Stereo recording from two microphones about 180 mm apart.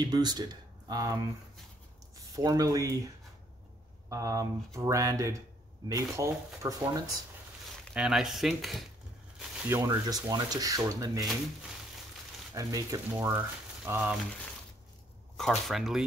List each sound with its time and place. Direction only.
0.0 s speech: 20° right (ahead or behind)
4.1 s speech: 20° right (ahead or behind)
7.9 s speech: 5° right (ahead or behind)
9.7 s speech: 15° right (ahead or behind)
12.5 s speech: 15° right (ahead or behind)
15.3 s speech: centre (ahead or behind)